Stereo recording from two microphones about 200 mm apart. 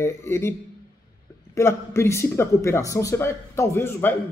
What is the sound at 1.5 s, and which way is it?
Speech, 15° left (ahead or behind).